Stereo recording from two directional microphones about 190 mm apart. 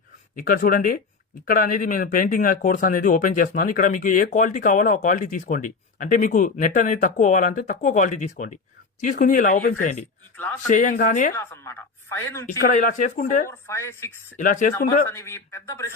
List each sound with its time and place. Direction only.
0.3 s speech: 45° left (ahead or behind)
11.3 s speech: 15° left (ahead or behind)
12.5 s speech: 45° left (ahead or behind)
13.5 s speech: 15° left (ahead or behind)
14.3 s speech: 45° left (ahead or behind)
15.0 s speech: 15° left (ahead or behind)